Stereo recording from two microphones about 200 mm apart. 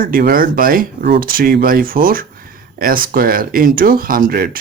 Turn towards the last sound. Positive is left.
turn(degrees=-45)  # may be behind; listen again after turning